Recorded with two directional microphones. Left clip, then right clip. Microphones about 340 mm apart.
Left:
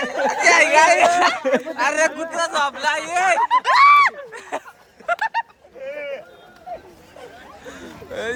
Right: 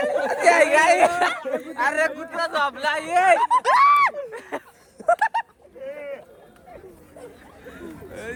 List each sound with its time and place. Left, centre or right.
0.0 s speech: centre
3.4 s speech: right
3.7 s a sound: centre
5.2 s bird: right
7.7 s hubbub: centre